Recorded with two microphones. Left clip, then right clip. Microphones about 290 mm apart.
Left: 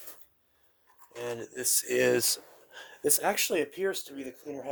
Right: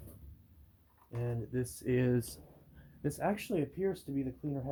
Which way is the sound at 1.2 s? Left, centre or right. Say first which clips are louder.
Left 5 dB; left.